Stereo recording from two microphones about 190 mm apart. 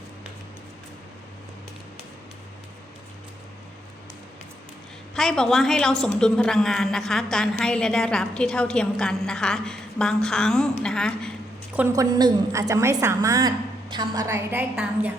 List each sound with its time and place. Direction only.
5.1 s a woman's voice: 5° left (ahead or behind)
11.7 s a woman's voice: 10° right (ahead or behind)